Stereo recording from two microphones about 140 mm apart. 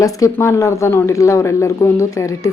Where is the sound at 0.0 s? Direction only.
25° left (ahead or behind).